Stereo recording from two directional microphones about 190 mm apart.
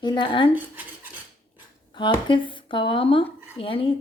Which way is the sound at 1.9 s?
25° left (ahead or behind).